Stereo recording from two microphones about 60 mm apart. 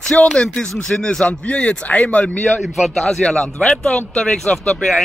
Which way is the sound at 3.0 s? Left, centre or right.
Centre.